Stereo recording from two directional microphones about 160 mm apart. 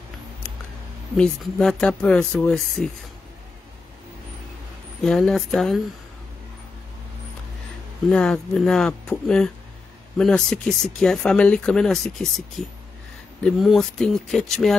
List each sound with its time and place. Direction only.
1.1 s speech: 5° left (ahead or behind)
5.0 s speech: 5° left (ahead or behind)
8.1 s speech: 5° left (ahead or behind)